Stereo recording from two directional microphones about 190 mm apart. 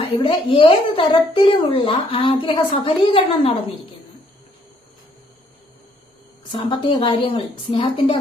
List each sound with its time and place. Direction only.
0.2 s a woman's voice: 25° left (ahead or behind)
6.5 s a woman's voice: 25° left (ahead or behind)